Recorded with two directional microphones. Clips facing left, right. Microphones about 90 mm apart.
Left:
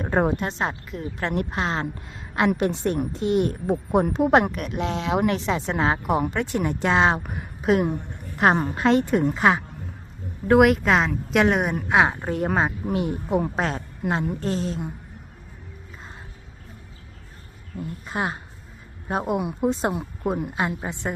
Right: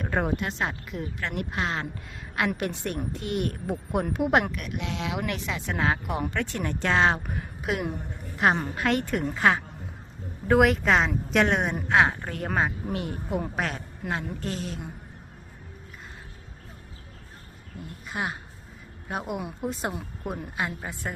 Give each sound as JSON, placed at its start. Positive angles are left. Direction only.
{"t": 0.0, "sound": "speech", "side_deg": 30}
{"t": 7.6, "sound": "a woman's voice", "side_deg": 35}
{"t": 8.6, "sound": "speech", "side_deg": 25}
{"t": 10.5, "sound": "speech", "side_deg": 0}
{"t": 11.9, "sound": "speech", "side_deg": 15}
{"t": 17.7, "sound": "speech", "side_deg": 35}
{"t": 19.4, "sound": "speech", "side_deg": 20}